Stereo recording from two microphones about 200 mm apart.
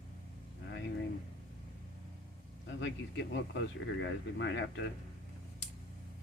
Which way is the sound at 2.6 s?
65° left (ahead or behind).